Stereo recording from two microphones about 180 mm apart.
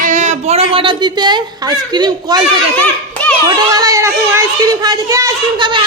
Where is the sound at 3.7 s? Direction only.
20° right (ahead or behind).